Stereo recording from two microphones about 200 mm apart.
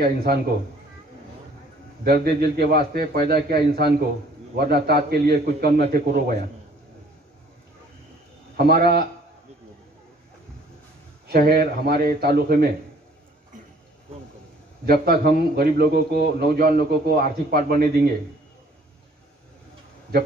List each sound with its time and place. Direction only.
0.0 s a man's voice: 50° right (ahead or behind)
2.0 s a man's voice: 50° right (ahead or behind)
8.5 s a man's voice: 50° right (ahead or behind)
11.2 s a man's voice: 50° right (ahead or behind)
14.9 s a man's voice: 50° right (ahead or behind)